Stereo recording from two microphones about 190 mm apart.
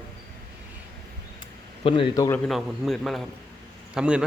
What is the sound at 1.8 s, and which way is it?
Speech, 25° left (ahead or behind).